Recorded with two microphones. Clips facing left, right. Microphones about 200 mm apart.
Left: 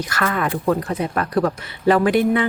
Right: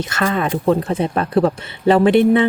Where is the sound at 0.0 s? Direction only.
25° right (ahead or behind).